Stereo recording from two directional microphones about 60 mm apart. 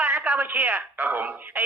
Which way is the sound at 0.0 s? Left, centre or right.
Right.